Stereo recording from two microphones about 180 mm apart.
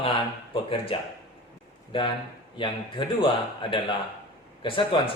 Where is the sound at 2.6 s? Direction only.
25° left (ahead or behind).